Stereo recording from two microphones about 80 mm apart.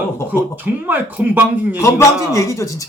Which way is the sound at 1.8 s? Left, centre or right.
Left.